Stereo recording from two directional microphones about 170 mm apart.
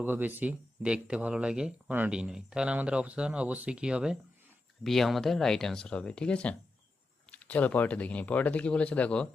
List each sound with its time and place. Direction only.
0.0 s speech: 10° right (ahead or behind); by 9.2 s 5° left (ahead or behind)